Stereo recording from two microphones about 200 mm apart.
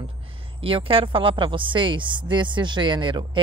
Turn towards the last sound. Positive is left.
turn(degrees=-25)  # may be behind; listen again after turning